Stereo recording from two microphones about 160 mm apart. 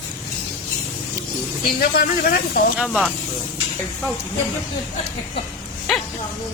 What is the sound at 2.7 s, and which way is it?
Speech, centre (ahead or behind).